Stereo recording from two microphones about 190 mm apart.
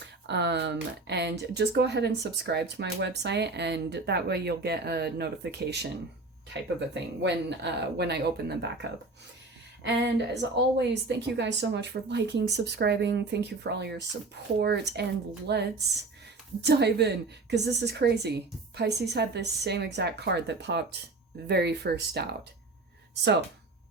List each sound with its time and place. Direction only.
0.0 s speech: 65° right (ahead or behind)